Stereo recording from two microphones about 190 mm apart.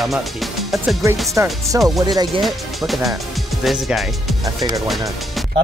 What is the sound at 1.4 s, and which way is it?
Speech, 15° right (ahead or behind).